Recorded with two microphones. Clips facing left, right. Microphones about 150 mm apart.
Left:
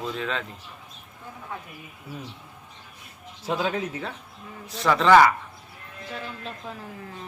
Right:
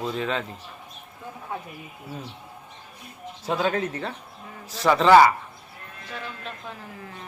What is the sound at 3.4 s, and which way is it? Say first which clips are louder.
Speech: right 2 dB; centre (ahead or behind).